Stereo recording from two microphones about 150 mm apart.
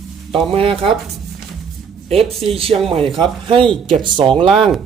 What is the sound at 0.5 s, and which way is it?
Speech, 40° right (ahead or behind).